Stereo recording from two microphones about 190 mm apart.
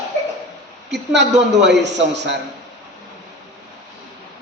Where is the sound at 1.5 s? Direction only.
65° right (ahead or behind).